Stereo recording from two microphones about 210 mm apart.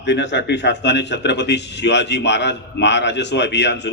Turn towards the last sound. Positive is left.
turn(degrees=55)  # may be behind; listen again after turning